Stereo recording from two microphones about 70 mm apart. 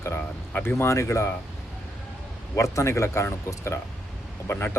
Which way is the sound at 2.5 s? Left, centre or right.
Left.